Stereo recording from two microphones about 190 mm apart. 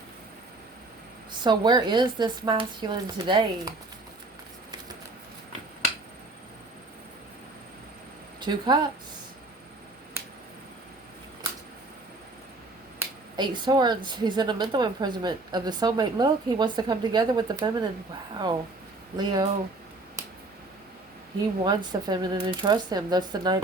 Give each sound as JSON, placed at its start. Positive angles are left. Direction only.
{"t": 1.5, "sound": "a woman's voice", "side_deg": -25}
{"t": 8.4, "sound": "a woman's voice", "side_deg": -25}
{"t": 13.3, "sound": "a woman's voice", "side_deg": -25}
{"t": 19.1, "sound": "a woman's voice", "side_deg": -20}
{"t": 21.6, "sound": "a woman's voice", "side_deg": -25}